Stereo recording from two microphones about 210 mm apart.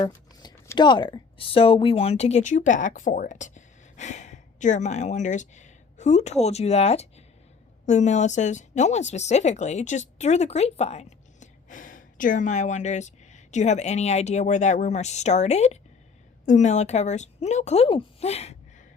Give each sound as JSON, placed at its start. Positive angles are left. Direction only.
{"t": 0.0, "sound": "speech", "side_deg": 20}